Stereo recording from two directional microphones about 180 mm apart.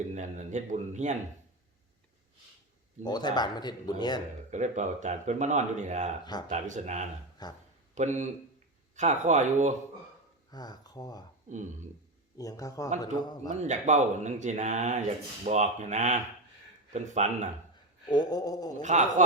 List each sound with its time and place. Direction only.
0.1 s speech: 40° right (ahead or behind)
3.0 s speech: 25° left (ahead or behind)
4.5 s speech: 40° right (ahead or behind)
7.4 s speech: 20° left (ahead or behind)
7.9 s speech: 40° right (ahead or behind)
10.5 s speech: 20° left (ahead or behind)
11.5 s speech: 45° right (ahead or behind)
12.4 s speech: 20° left (ahead or behind)
13.5 s speech: 40° right (ahead or behind)
18.1 s speech: 20° left (ahead or behind)
18.8 s speech: 40° right (ahead or behind)